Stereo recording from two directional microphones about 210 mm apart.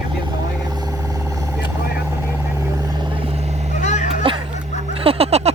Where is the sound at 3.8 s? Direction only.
35° left (ahead or behind).